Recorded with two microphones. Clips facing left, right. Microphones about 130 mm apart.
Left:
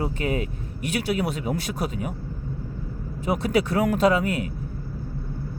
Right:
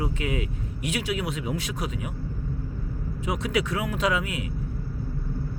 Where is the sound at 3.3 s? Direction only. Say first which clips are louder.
Left 4 dB; 40° left (ahead or behind).